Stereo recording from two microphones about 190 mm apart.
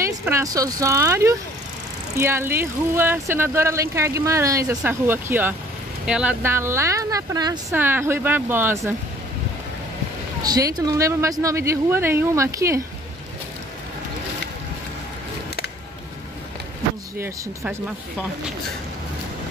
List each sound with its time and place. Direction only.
0.0 s speech: 15° right (ahead or behind)
10.4 s speech: 20° right (ahead or behind)